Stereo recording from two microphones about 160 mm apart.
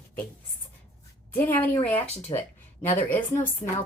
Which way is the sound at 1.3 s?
15° left (ahead or behind).